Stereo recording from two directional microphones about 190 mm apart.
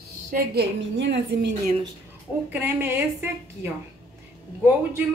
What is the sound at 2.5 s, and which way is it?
A woman's voice, 10° right (ahead or behind).